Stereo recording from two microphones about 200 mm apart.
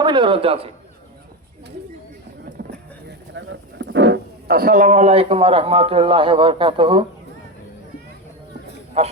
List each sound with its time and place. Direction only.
0.0 s a man's voice: 25° right (ahead or behind)
2.6 s vehicle: 50° right (ahead or behind)
3.3 s speech: 65° right (ahead or behind); by 7.0 s 25° right (ahead or behind)
9.0 s a man's voice: 30° right (ahead or behind)